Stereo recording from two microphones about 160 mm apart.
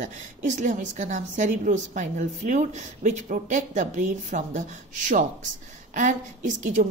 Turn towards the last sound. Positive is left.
turn(degrees=-50)  # may be behind; listen again after turning